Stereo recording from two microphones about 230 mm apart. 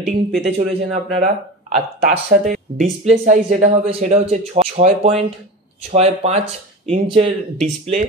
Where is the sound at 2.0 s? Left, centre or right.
Right.